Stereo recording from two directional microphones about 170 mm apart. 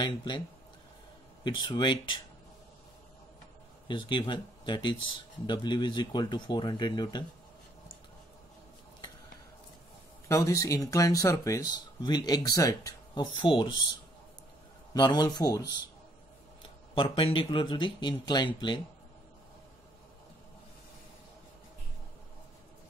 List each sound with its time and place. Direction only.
0.0 s speech: 25° left (ahead or behind)
1.4 s speech: 25° left (ahead or behind)
3.8 s speech: 30° left (ahead or behind)
10.2 s speech: 20° left (ahead or behind)
15.0 s speech: 25° left (ahead or behind)
16.6 s speech: 30° left (ahead or behind)